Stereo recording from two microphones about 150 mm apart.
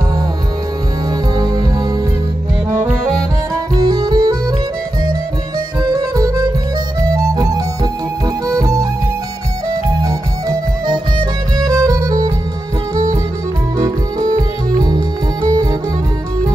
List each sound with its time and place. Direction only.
1.3 s music: 25° right (ahead or behind)
2.7 s music: 15° right (ahead or behind)
3.5 s music: 25° right (ahead or behind)
5.9 s music: 25° right (ahead or behind)
10.0 s music: 25° right (ahead or behind)